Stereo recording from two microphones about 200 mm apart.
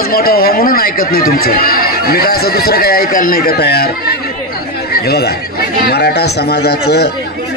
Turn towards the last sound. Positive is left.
turn(degrees=55)  # may be behind; listen again after turning